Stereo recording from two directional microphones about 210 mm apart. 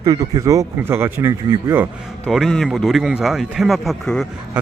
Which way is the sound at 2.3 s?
Centre (ahead or behind).